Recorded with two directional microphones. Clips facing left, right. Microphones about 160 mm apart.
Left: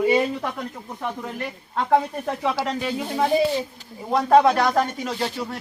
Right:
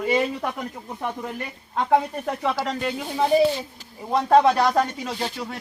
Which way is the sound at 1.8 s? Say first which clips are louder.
Even; 5° right (ahead or behind).